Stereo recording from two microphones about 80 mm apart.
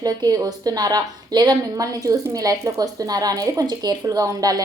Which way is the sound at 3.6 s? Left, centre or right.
Right.